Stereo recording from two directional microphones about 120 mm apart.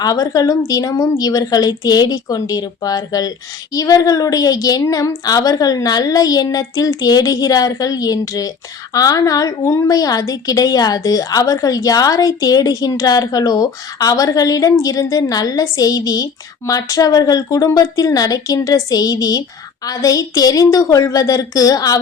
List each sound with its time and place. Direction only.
0.0 s a woman's voice: 30° left (ahead or behind)